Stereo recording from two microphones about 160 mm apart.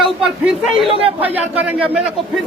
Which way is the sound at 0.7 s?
35° right (ahead or behind).